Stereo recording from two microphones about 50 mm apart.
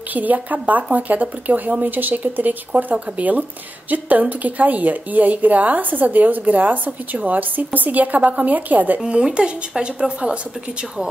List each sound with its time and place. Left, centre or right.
0.1 s a woman's voice: right
9.0 s speech: centre